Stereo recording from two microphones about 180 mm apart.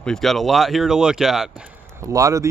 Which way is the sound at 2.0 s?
15° right (ahead or behind).